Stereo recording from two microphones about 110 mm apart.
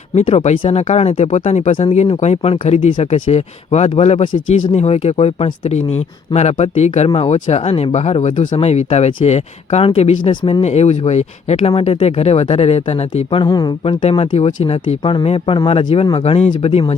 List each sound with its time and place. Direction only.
0.1 s speech: 80° left
1.5 s speech: 90° left; by 5.5 s 75° left (ahead or behind)
5.6 s speech: 90° left
7.1 s speech: 75° left (ahead or behind)
9.8 s speech: 65° left (ahead or behind)
13.4 s speech: 40° left (ahead or behind)
13.8 s speech: 60° left (ahead or behind)
15.1 s speech: 55° left (ahead or behind)